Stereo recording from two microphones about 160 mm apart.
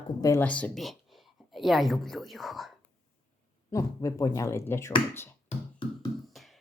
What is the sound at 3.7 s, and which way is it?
Speech, 20° left (ahead or behind).